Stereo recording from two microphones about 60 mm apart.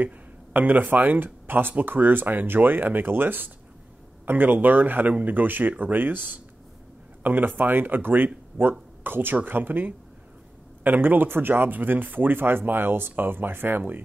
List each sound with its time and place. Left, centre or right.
0.0 s speech: right